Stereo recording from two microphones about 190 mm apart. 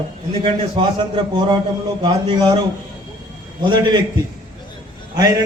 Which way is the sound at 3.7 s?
25° right (ahead or behind).